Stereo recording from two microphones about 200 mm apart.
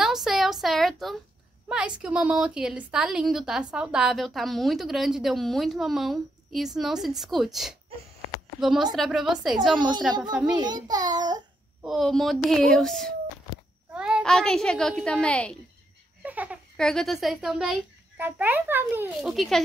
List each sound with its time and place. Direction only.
0.0 s a sound: centre (ahead or behind)
1.7 s a woman's voice: 5° right (ahead or behind)
9.6 s a child's voice: 20° right (ahead or behind)
11.8 s a woman's voice: centre (ahead or behind)
16.2 s a sound: 5° right (ahead or behind)
16.7 s a woman's voice: centre (ahead or behind)